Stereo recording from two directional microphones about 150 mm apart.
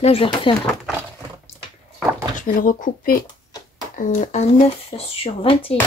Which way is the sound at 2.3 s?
60° left (ahead or behind).